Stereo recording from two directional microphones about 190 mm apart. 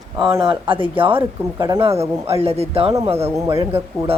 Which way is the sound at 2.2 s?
30° right (ahead or behind).